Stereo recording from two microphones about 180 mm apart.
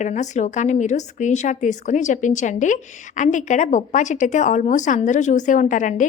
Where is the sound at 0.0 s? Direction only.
40° left (ahead or behind).